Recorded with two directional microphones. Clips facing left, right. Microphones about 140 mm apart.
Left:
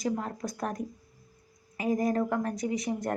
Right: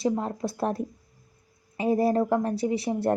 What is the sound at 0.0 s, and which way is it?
Speech, 30° right (ahead or behind).